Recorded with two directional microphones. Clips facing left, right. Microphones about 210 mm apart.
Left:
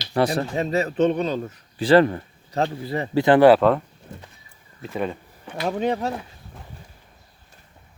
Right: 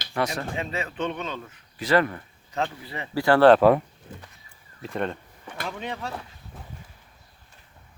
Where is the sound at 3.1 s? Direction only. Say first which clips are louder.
Left 3 dB; 20° left (ahead or behind).